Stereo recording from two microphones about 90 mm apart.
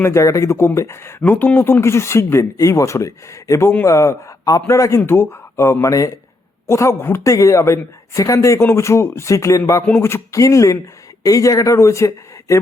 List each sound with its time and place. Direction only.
0.0 s a man's voice: 35° left (ahead or behind)